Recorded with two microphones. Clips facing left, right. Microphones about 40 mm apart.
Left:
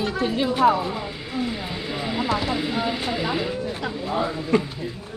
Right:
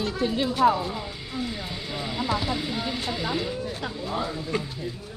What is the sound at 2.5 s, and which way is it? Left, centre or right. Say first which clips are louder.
Vehicle: left 4 dB; centre.